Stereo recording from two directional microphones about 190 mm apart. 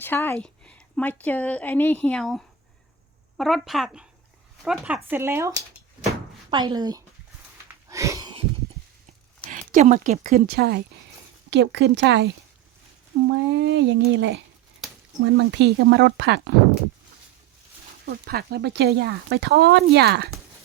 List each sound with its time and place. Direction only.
0.0 s a woman's voice: 10° left (ahead or behind)
5.1 s speech: 10° right (ahead or behind)
6.5 s speech: 25° right (ahead or behind)
7.9 s a sound: 15° right (ahead or behind)
9.5 s speech: 40° right (ahead or behind); by 12.3 s 60° right (ahead or behind)
13.2 s speech: 70° right (ahead or behind)
15.2 s speech: 85° right; by 16.4 s 60° right (ahead or behind)
18.0 s speech: 55° right (ahead or behind)